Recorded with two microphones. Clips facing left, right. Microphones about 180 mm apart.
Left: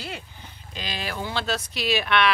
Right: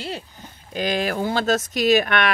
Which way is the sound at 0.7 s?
50° right (ahead or behind).